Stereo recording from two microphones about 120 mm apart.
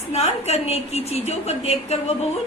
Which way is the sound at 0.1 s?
60° left (ahead or behind).